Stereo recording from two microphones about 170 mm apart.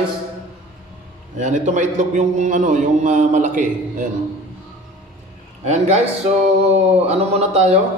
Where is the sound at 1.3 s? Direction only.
45° right (ahead or behind).